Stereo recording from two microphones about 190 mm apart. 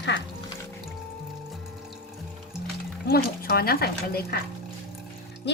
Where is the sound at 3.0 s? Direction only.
55° left (ahead or behind).